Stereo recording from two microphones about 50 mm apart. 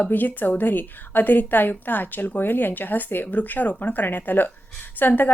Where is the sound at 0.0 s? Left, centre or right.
Left.